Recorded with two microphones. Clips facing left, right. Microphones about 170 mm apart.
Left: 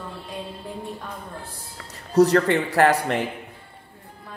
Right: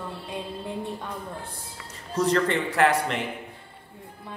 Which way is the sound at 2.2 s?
40° left (ahead or behind).